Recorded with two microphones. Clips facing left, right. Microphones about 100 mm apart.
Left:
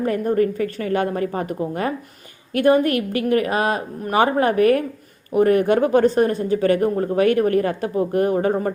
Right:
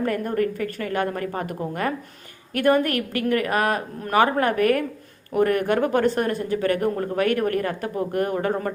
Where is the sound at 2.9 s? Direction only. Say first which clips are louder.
Left 4 dB; 20° left (ahead or behind).